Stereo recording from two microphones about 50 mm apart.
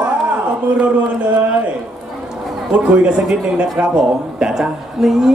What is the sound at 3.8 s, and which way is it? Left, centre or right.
Speech, centre.